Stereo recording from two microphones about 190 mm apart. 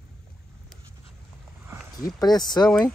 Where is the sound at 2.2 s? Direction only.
20° left (ahead or behind).